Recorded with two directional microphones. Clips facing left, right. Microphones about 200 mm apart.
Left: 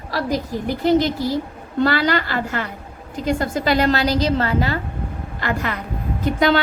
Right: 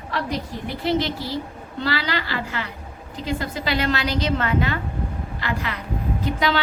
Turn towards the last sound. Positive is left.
turn(degrees=45)  # may be behind; listen again after turning